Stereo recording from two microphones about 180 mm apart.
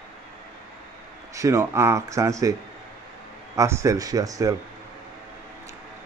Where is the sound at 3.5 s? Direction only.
15° right (ahead or behind).